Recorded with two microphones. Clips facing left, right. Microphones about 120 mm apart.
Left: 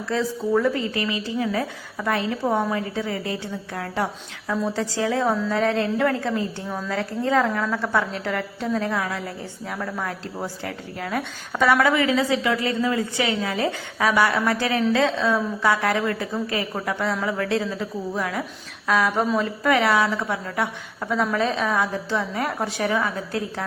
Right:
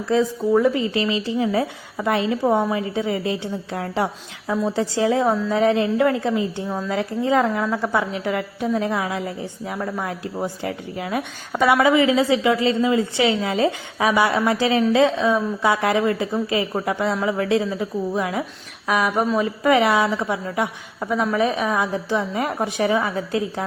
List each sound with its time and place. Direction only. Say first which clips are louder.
0.0 s a woman's voice: right 5 dB; 20° right (ahead or behind)